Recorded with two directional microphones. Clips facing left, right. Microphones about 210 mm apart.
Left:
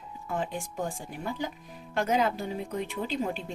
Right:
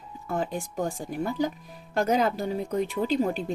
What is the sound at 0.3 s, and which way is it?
Speech, 40° right (ahead or behind).